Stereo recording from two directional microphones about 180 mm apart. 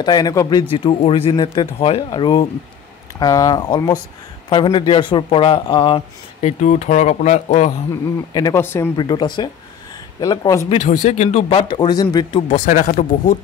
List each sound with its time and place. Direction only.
0.0 s a man's voice: 20° left (ahead or behind)
6.6 s speech: 40° left (ahead or behind)
8.3 s speech: 20° left (ahead or behind)
8.9 s a man's voice: 25° left (ahead or behind)
10.7 s a man's voice: 40° left (ahead or behind)
12.5 s speech: 45° left (ahead or behind)